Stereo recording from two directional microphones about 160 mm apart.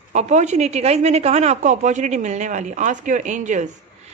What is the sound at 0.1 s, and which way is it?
A woman's voice, 45° right (ahead or behind).